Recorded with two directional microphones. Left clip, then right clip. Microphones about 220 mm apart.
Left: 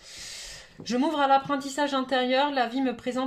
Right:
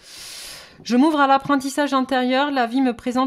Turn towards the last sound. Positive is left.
turn(degrees=-40)  # may be behind; listen again after turning